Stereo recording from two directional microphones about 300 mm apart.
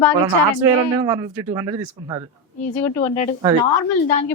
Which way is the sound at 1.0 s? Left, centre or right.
Centre.